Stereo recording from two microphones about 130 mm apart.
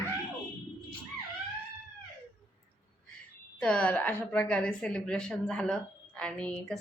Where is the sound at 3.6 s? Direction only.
10° left (ahead or behind).